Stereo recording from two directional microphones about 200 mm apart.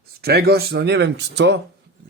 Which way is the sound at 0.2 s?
55° right (ahead or behind).